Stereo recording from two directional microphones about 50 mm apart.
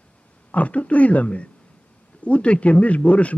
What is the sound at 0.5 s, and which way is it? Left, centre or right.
A man's voice, left.